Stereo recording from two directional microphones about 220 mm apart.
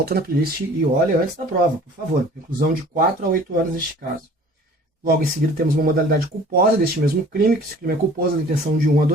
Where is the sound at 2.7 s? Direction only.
40° right (ahead or behind).